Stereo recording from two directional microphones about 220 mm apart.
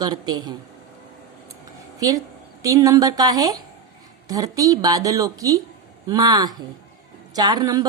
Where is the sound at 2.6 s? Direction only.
15° right (ahead or behind).